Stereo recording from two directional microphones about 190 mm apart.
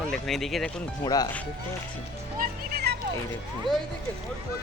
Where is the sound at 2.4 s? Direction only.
55° right (ahead or behind).